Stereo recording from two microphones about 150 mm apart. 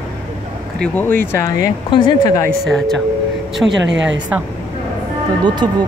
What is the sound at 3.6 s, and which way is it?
Speech, 10° right (ahead or behind).